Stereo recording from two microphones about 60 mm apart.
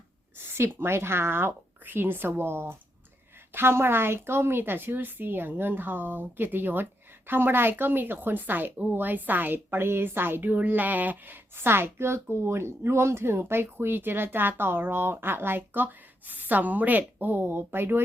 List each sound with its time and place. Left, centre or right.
0.5 s a woman's voice: right
11.5 s a woman's voice: right